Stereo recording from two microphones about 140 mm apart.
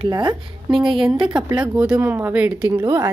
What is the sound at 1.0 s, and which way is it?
Speech, 40° right (ahead or behind).